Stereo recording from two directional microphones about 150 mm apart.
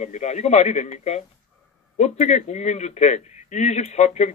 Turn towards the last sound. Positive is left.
turn(degrees=50)  # may be behind; listen again after turning